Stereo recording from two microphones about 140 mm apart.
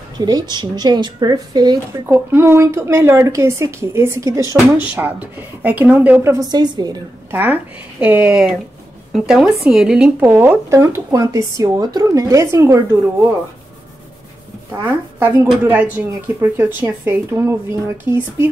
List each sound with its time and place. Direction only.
0.2 s speech: 30° right (ahead or behind)
2.0 s speech: 20° right (ahead or behind)
6.5 s speech: 30° right (ahead or behind)
7.2 s a woman's voice: 15° right (ahead or behind)
15.1 s speech: 15° right (ahead or behind)